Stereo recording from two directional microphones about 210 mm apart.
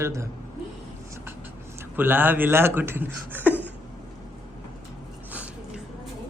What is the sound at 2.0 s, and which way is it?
A man's voice, 10° right (ahead or behind).